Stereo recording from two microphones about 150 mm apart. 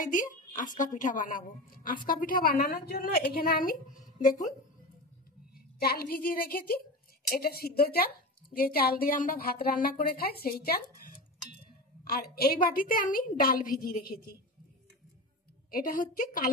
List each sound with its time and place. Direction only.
0.0 s a woman's voice: 60° left (ahead or behind); by 3.7 s 75° left (ahead or behind)
5.8 s a woman's voice: 85° left
7.2 s a woman's voice: 90° left
12.1 s a woman's voice: 90° left; by 14.3 s 65° left (ahead or behind)
15.7 s a woman's voice: 65° left (ahead or behind)